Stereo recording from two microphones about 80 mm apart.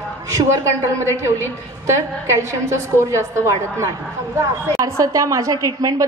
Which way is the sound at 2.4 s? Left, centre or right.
Right.